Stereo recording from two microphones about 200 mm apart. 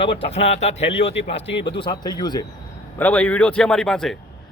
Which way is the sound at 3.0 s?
5° left (ahead or behind).